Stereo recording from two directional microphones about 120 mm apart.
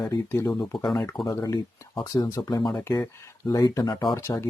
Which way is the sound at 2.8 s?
20° left (ahead or behind).